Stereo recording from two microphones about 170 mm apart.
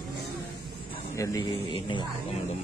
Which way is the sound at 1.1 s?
20° left (ahead or behind).